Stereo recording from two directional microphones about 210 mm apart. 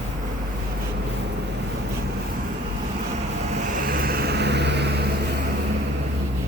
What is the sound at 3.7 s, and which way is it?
Vehicle, 45° right (ahead or behind).